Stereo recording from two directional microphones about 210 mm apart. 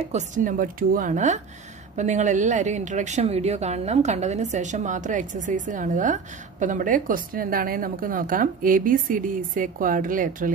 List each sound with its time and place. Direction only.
0.0 s a woman's voice: 35° right (ahead or behind)